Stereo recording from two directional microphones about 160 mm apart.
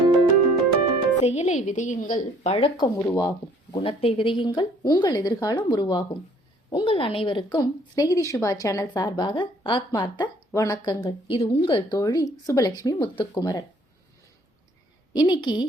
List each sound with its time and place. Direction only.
1.2 s a woman's voice: 40° left (ahead or behind)
2.5 s a woman's voice: 35° left (ahead or behind)
15.1 s a woman's voice: 25° left (ahead or behind)